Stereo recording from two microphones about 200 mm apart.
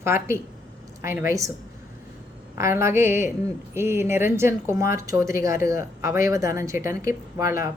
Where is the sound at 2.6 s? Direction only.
15° right (ahead or behind).